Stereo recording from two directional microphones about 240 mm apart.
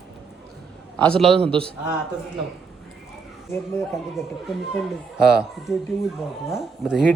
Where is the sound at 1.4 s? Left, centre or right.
Right.